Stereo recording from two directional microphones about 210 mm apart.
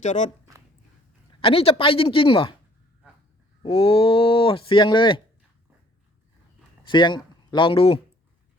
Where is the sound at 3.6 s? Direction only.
25° left (ahead or behind).